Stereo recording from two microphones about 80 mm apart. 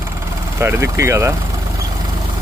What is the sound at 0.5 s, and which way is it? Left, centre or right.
Speech, right.